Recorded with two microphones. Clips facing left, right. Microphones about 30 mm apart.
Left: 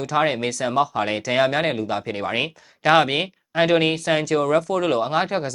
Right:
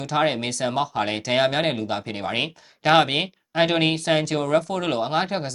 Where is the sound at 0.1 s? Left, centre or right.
Right.